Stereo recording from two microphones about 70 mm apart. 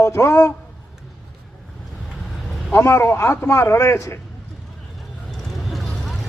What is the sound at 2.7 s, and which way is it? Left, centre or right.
A man's voice, left.